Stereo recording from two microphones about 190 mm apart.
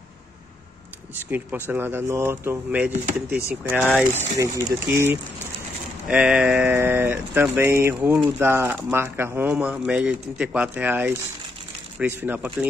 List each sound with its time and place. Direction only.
1.7 s speech: 10° right (ahead or behind)